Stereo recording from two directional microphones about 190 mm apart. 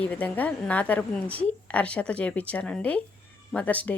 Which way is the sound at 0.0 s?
10° left (ahead or behind).